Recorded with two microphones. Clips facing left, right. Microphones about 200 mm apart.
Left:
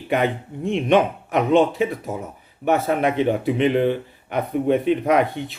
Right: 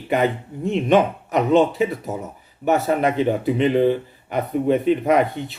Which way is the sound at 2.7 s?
Centre (ahead or behind).